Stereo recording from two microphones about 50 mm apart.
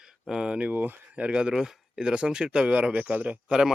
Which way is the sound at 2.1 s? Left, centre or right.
Centre.